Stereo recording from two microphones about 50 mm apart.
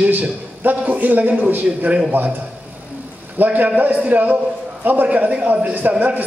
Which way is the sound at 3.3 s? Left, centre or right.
Right.